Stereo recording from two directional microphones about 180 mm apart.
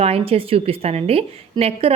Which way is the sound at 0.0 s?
30° right (ahead or behind).